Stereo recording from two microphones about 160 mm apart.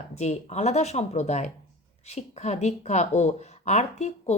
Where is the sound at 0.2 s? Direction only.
45° left (ahead or behind).